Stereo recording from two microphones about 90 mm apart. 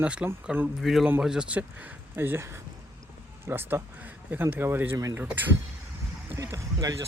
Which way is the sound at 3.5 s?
25° right (ahead or behind).